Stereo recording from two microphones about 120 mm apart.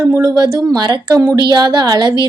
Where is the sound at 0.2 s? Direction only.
35° right (ahead or behind).